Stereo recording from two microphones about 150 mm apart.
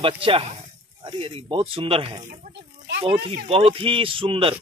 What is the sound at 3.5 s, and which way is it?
Speech, 40° right (ahead or behind).